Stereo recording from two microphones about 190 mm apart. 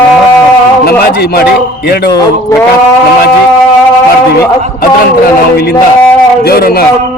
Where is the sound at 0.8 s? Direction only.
55° left (ahead or behind).